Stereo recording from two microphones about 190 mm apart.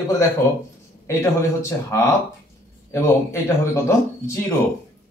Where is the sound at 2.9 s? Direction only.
15° left (ahead or behind).